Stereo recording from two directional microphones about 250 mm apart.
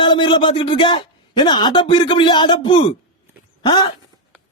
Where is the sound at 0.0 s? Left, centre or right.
Centre.